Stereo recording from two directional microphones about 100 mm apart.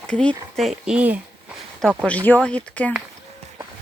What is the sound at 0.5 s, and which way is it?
Speech, centre (ahead or behind).